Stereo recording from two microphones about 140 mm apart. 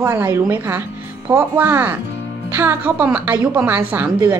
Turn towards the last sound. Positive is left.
turn(degrees=-15)  # may be behind; listen again after turning